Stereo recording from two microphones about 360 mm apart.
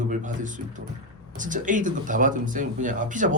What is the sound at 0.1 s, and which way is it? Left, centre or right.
Speech, right.